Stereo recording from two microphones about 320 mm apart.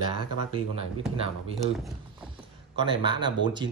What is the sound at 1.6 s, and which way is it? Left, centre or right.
Speech, centre.